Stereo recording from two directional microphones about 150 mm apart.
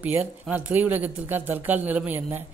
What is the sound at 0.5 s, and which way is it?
Speech, 10° right (ahead or behind).